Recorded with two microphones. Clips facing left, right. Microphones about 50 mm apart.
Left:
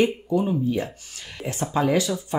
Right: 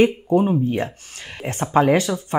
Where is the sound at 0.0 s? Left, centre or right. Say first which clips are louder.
Right 5 dB; right.